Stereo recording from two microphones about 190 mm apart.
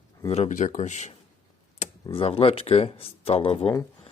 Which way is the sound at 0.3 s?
35° left (ahead or behind).